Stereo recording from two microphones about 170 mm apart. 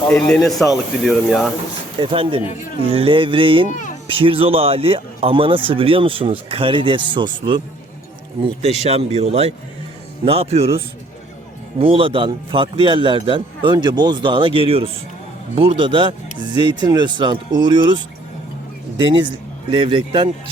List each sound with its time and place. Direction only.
0.1 s speech: 5° left (ahead or behind)
2.0 s speech: 30° right (ahead or behind)
8.8 s speech: 40° right (ahead or behind)